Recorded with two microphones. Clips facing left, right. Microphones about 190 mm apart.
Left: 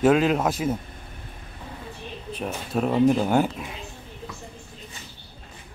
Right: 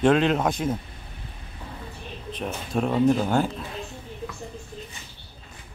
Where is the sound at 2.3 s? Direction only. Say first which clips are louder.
Even; 5° left (ahead or behind).